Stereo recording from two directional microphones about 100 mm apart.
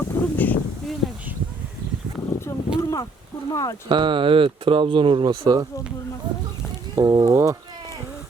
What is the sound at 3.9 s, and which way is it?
Speech, 55° right (ahead or behind).